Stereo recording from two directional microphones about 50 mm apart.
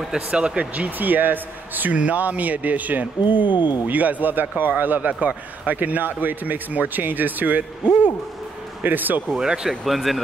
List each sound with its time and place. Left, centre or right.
0.3 s speech: right
8.8 s speech: right
9.3 s speech: centre
9.7 s speech: centre